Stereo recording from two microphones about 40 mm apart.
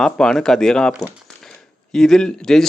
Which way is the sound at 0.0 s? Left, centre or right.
Centre.